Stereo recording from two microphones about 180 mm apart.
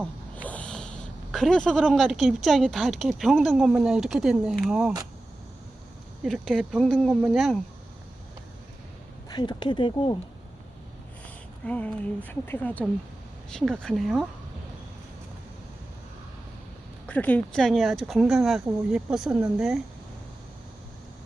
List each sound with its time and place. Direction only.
0.0 s speech: 10° left (ahead or behind)
6.2 s speech: centre (ahead or behind)
9.3 s speech: 25° left (ahead or behind)
11.6 s a sound: 5° left (ahead or behind)
12.3 s speech: 10° left (ahead or behind)
17.1 s speech: 10° left (ahead or behind)